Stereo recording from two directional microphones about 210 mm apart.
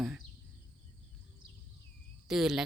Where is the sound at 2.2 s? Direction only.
5° right (ahead or behind).